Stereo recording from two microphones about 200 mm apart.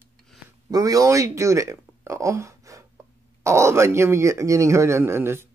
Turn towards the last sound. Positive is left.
turn(degrees=-10)  # may be behind; listen again after turning